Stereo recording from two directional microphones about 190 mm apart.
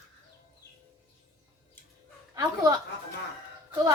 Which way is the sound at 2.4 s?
20° right (ahead or behind).